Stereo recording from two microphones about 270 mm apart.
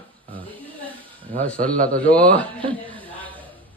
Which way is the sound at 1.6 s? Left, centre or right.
Right.